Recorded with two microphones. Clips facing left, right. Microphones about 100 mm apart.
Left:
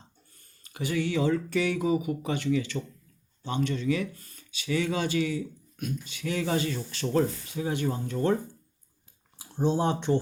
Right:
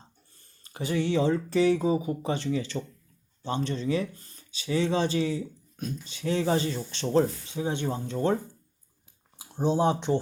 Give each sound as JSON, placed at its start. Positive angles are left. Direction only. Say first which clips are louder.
{"t": 0.3, "sound": "speech", "louder": "even", "side_deg": -35}
{"t": 9.4, "sound": "speech", "louder": "right 2 dB", "side_deg": -15}